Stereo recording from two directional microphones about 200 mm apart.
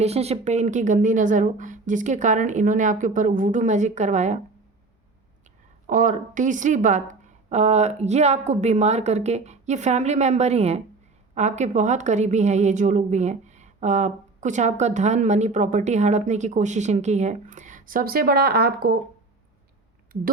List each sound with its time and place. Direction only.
0.0 s a woman's voice: 30° right (ahead or behind)
5.9 s a woman's voice: 40° right (ahead or behind)